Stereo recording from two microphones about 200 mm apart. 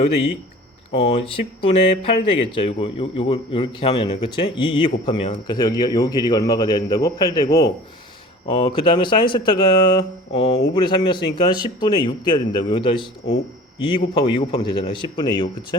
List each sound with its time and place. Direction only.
0.0 s speech: 30° left (ahead or behind)